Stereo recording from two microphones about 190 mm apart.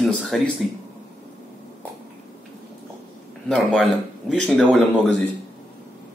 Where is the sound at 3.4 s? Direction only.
Centre (ahead or behind).